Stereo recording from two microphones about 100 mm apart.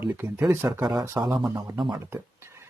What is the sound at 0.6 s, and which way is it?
Speech, 5° right (ahead or behind).